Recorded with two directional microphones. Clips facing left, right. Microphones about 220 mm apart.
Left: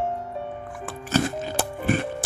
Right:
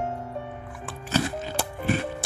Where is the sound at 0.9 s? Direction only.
50° left (ahead or behind).